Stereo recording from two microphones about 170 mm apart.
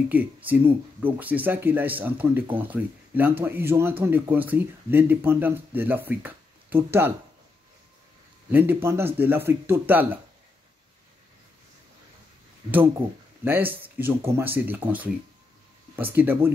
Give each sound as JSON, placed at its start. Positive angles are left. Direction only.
{"t": 0.1, "sound": "speech", "side_deg": -10}
{"t": 8.5, "sound": "speech", "side_deg": -10}
{"t": 13.4, "sound": "speech", "side_deg": -10}